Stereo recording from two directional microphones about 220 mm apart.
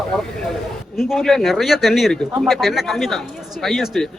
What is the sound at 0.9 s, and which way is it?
Speech, centre (ahead or behind).